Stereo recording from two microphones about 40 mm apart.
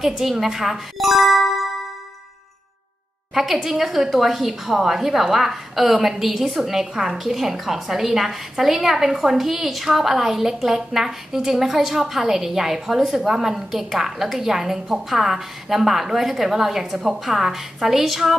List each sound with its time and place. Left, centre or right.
0.0 s speech: centre
3.6 s a woman's voice: centre